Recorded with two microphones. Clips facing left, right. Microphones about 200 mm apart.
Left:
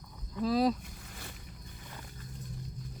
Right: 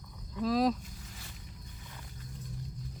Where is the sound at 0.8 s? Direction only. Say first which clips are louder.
Left 2 dB; 55° left (ahead or behind).